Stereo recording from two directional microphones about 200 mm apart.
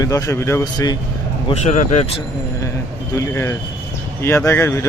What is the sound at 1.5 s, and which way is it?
Speech, 35° left (ahead or behind).